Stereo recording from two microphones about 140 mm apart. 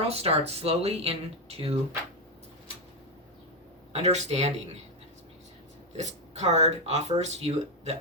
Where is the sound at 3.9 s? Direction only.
50° right (ahead or behind).